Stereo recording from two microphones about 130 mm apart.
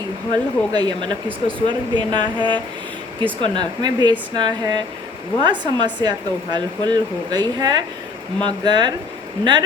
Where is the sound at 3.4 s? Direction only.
35° right (ahead or behind).